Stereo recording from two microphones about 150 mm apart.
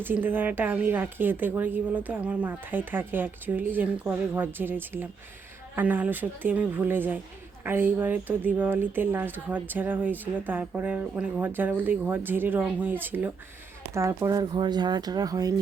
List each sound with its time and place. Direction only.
0.0 s a woman's voice: 15° right (ahead or behind)